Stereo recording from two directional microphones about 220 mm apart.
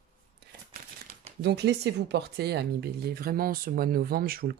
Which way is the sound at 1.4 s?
50° right (ahead or behind).